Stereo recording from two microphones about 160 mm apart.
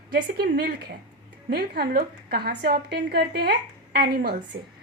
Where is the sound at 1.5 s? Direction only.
75° right (ahead or behind).